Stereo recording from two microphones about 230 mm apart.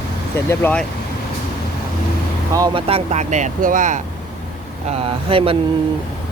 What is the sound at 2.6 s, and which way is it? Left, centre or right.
Speech, centre.